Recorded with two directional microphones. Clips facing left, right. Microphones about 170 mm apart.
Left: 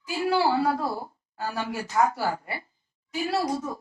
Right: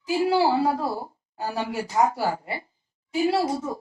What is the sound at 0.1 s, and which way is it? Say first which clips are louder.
A woman's voice: right 3 dB; 20° right (ahead or behind).